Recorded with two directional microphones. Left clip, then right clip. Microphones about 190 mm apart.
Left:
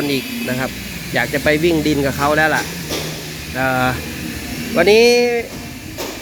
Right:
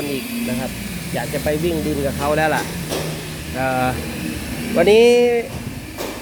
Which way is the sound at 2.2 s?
5° left (ahead or behind).